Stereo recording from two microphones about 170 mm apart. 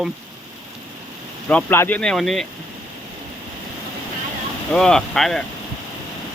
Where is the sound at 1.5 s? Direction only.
10° left (ahead or behind).